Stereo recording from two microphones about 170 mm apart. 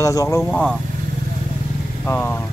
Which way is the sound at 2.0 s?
10° left (ahead or behind).